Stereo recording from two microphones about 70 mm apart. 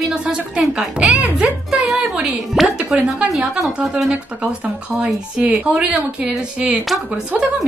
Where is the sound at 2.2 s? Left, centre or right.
Centre.